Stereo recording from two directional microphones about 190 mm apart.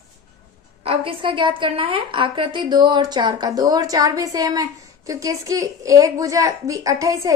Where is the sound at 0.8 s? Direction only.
30° right (ahead or behind).